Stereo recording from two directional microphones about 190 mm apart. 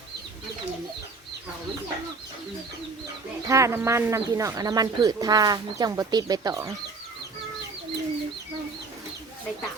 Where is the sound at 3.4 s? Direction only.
15° right (ahead or behind).